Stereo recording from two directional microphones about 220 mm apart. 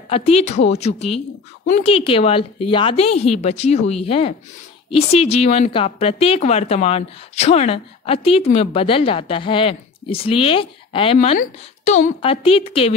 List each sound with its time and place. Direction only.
0.1 s a woman's voice: 30° left (ahead or behind)